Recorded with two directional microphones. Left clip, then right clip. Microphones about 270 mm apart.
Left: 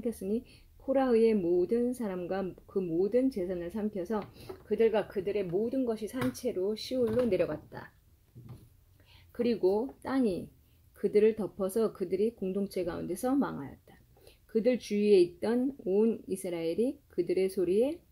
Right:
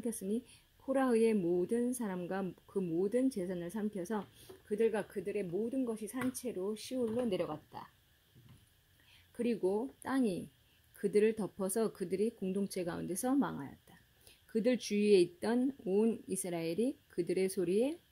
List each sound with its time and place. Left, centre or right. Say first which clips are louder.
0.0 s a woman's voice: left 5 dB; right
9.4 s speech: left 6 dB; right